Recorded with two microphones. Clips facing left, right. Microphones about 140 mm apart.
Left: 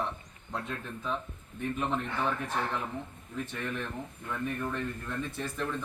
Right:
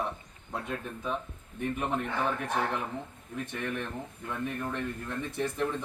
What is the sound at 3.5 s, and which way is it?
A man's voice, 15° right (ahead or behind).